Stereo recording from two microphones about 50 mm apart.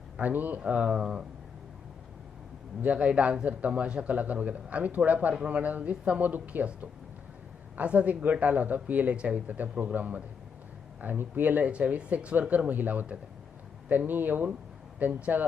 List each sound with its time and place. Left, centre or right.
0.2 s speech: right
0.6 s a man's voice: right
2.8 s a man's voice: right
7.8 s a man's voice: right